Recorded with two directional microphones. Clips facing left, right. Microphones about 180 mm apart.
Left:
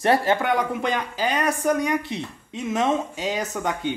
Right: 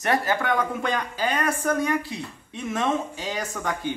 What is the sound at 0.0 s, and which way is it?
Speech, 30° left (ahead or behind).